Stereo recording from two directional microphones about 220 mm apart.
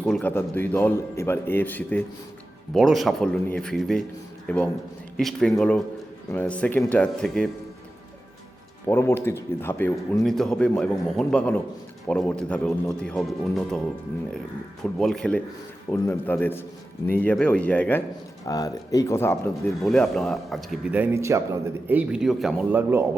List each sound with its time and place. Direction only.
0.0 s a man's voice: 5° left (ahead or behind)
8.9 s a man's voice: 10° left (ahead or behind)
14.9 s a man's voice: centre (ahead or behind)
19.8 s a man's voice: centre (ahead or behind)